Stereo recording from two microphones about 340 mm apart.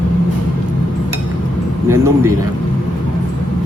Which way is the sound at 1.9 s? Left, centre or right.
Centre.